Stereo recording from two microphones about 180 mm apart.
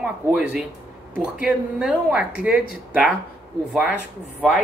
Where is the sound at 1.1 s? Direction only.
5° right (ahead or behind).